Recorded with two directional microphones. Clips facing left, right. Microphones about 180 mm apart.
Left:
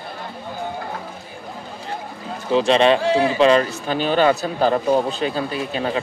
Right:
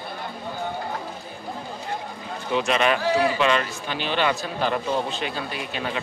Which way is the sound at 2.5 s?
30° left (ahead or behind).